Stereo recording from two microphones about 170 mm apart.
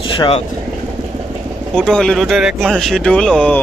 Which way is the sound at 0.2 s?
35° left (ahead or behind).